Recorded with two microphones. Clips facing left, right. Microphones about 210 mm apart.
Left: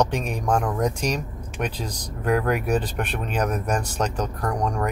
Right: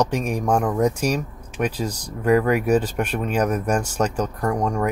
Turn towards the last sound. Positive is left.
turn(degrees=-5)  # may be behind; listen again after turning